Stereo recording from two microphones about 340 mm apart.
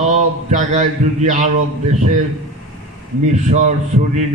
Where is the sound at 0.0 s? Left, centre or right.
Right.